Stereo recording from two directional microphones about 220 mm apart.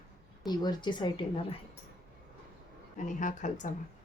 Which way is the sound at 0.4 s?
20° left (ahead or behind).